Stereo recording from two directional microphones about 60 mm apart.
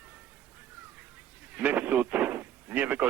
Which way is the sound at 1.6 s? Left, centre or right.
Right.